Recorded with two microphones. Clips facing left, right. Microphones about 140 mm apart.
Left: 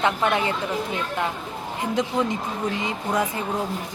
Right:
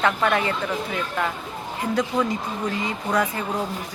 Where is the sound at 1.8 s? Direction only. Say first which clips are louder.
Right 1 dB; 20° left (ahead or behind).